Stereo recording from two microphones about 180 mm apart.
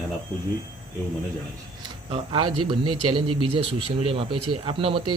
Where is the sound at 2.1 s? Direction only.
25° right (ahead or behind).